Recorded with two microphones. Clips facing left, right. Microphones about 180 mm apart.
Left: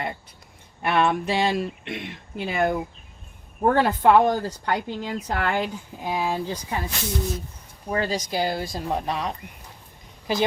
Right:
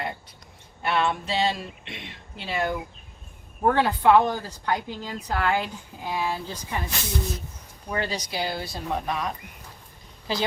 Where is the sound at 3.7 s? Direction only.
45° left (ahead or behind).